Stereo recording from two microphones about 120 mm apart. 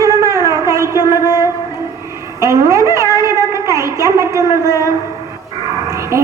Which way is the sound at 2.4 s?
25° right (ahead or behind).